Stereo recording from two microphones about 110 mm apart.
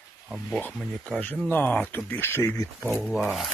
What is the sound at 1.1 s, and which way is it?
Speech, 10° left (ahead or behind).